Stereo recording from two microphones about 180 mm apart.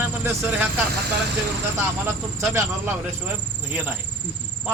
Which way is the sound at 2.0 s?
15° right (ahead or behind).